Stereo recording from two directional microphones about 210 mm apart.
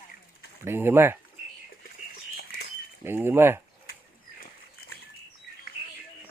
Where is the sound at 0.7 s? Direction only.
10° right (ahead or behind).